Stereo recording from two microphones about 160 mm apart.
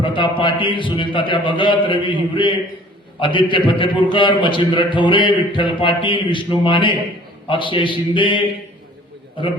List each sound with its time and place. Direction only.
0.0 s a man's voice: 30° left (ahead or behind)